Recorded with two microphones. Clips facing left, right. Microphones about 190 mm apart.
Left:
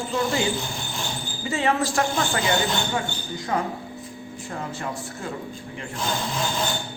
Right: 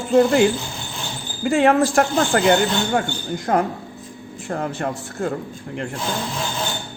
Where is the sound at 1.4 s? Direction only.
55° right (ahead or behind).